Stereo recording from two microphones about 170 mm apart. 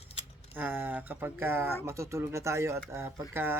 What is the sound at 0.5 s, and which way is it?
Speech, 10° right (ahead or behind).